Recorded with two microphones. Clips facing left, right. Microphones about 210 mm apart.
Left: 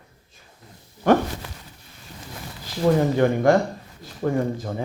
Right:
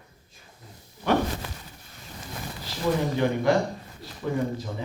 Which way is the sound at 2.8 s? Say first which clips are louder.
Left 6 dB; 50° left (ahead or behind).